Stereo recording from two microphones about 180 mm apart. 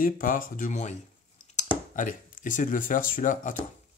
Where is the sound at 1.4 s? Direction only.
40° left (ahead or behind).